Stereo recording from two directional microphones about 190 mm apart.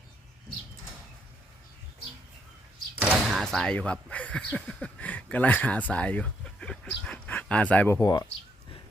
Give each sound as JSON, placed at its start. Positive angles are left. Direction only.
{"t": 2.9, "sound": "speech", "side_deg": -10}
{"t": 7.0, "sound": "a sound", "side_deg": 5}
{"t": 8.0, "sound": "speech", "side_deg": 20}